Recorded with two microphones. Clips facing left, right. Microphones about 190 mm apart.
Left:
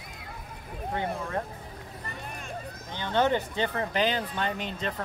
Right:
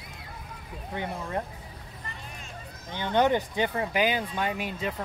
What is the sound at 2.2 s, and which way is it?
Vehicle, 55° left (ahead or behind).